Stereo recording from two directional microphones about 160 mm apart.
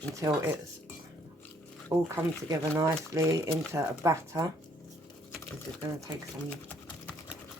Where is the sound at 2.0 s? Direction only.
20° right (ahead or behind).